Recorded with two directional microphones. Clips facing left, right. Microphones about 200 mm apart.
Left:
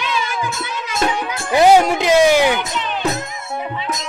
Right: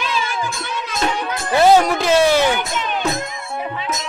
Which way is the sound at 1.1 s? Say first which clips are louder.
Left 1 dB; 15° left (ahead or behind).